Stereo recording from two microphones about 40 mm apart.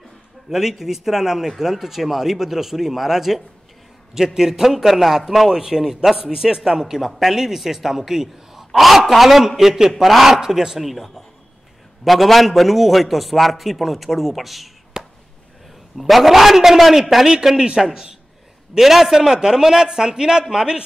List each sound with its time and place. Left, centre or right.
0.5 s a man's voice: centre
15.0 s a sound: centre
16.0 s a man's voice: centre